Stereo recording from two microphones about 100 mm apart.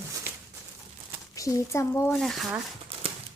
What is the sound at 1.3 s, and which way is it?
Speech, 30° left (ahead or behind).